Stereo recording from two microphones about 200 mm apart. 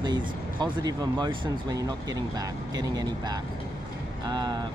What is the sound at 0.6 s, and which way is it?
Speech, 20° right (ahead or behind).